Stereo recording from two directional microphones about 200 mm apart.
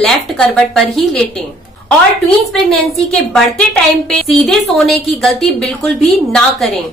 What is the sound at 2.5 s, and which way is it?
A woman's voice, centre (ahead or behind).